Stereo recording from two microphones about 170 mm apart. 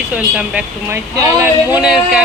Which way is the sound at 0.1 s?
10° right (ahead or behind).